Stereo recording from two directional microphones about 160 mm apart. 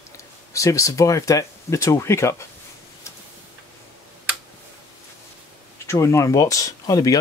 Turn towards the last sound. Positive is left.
turn(degrees=20)  # may be behind; listen again after turning